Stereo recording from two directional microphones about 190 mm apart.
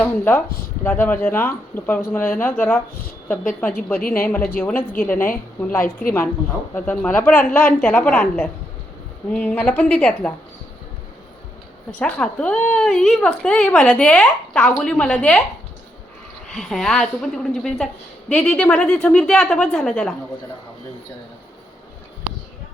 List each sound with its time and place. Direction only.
0.0 s speech: 10° left (ahead or behind)
11.9 s speech: 5° left (ahead or behind)
16.5 s speech: centre (ahead or behind)